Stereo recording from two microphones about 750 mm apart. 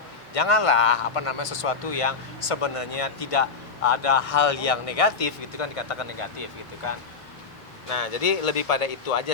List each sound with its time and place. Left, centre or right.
0.3 s speech: left